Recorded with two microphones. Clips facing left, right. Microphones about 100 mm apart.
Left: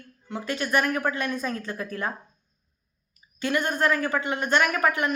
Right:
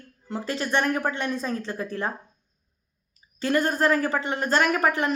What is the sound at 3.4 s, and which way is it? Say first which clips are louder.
Speech: right 2 dB; 35° right (ahead or behind).